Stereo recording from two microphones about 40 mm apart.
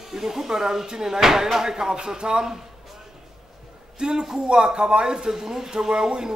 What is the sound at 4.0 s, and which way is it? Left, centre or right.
A man's voice, centre.